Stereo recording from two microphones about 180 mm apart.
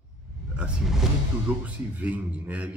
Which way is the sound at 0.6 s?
Centre (ahead or behind).